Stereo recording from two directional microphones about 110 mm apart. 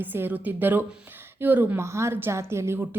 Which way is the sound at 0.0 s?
15° right (ahead or behind).